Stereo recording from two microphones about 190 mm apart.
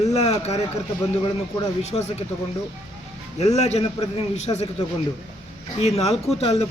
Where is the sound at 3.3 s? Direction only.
35° left (ahead or behind).